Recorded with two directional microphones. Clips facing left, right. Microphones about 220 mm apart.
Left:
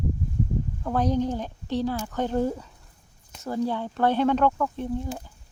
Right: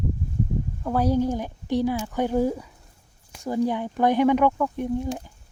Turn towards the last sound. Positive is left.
turn(degrees=-15)  # may be behind; listen again after turning